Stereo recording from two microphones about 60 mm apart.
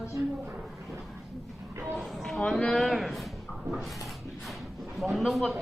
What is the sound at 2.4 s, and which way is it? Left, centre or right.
Speech, centre.